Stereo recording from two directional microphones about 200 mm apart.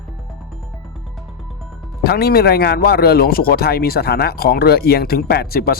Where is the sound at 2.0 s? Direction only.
50° left (ahead or behind).